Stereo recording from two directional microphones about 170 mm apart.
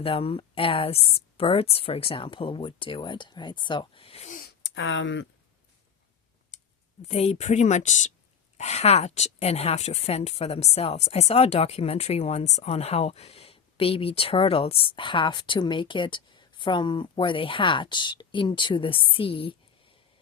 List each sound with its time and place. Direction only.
0.0 s a woman's voice: 35° left (ahead or behind)
4.4 s a sound: 80° left
7.1 s a woman's voice: 40° left (ahead or behind)